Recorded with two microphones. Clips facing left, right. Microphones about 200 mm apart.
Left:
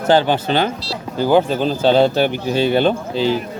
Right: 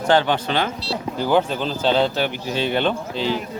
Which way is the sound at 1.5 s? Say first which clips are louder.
Left 6 dB; 45° left (ahead or behind).